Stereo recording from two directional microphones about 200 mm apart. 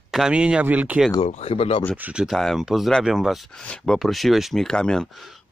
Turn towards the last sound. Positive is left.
turn(degrees=0)  # may be behind; listen again after turning